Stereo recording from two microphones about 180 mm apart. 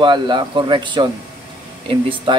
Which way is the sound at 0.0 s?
25° right (ahead or behind).